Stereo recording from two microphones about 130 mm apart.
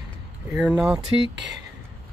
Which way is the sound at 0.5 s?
5° right (ahead or behind).